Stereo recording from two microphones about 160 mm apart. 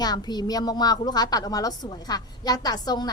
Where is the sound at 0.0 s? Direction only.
25° left (ahead or behind).